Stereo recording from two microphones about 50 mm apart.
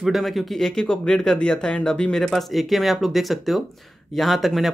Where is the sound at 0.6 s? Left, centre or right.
Centre.